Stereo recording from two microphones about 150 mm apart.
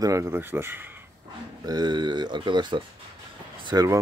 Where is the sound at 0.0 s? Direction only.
20° right (ahead or behind).